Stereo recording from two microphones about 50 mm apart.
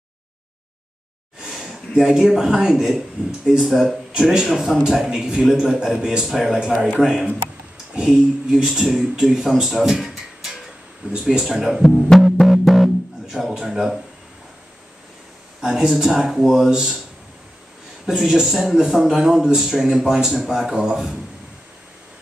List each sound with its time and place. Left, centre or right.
1.4 s speech: centre
4.1 s a man's voice: centre
11.0 s speech: right
11.4 s a man's voice: centre
12.1 s music: centre
15.6 s a man's voice: centre
18.0 s a man's voice: centre